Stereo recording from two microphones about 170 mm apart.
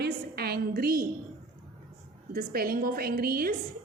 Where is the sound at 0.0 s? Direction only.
65° right (ahead or behind).